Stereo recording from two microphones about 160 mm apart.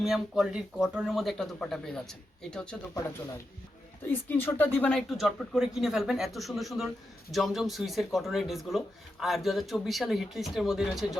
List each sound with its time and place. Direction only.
0.0 s speech: centre (ahead or behind)
2.9 s speech: 20° left (ahead or behind); by 11.2 s centre (ahead or behind)